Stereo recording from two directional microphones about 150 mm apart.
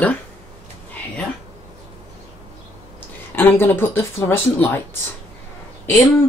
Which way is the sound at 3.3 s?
15° left (ahead or behind).